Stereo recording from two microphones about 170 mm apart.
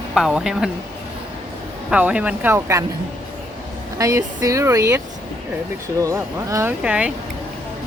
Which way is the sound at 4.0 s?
20° right (ahead or behind).